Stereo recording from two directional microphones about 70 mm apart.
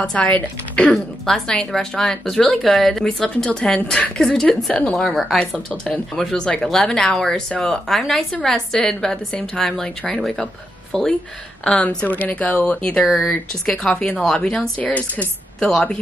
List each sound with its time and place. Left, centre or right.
0.0 s speech: centre
1.2 s a woman's voice: centre